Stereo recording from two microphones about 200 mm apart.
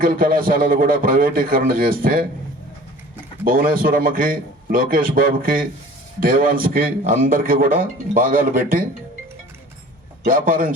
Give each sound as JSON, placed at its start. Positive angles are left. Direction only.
{"t": 0.0, "sound": "a man's voice", "side_deg": -45}
{"t": 3.4, "sound": "a man's voice", "side_deg": -45}
{"t": 10.2, "sound": "a man's voice", "side_deg": -45}